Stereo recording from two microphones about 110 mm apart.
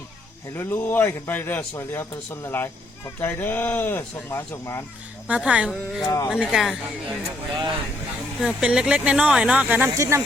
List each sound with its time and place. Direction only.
0.5 s speech: 20° left (ahead or behind)
5.3 s speech: 10° right (ahead or behind)
6.0 s speech: 35° left (ahead or behind)
6.2 s speech: 15° left (ahead or behind)
6.5 s speech: 5° right (ahead or behind)
10.0 s speech: 30° right (ahead or behind)